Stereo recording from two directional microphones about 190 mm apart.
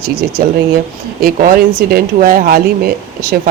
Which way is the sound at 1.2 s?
50° right (ahead or behind).